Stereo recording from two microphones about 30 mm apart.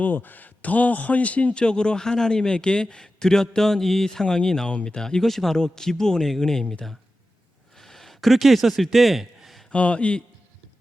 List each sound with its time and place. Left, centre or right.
0.0 s a man's voice: left
1.5 s a man's voice: left
3.7 s speech: centre
4.7 s speech: left
4.9 s a man's voice: left
5.2 s speech: centre
5.5 s a man's voice: left
7.8 s a sound: centre
9.7 s a man's voice: left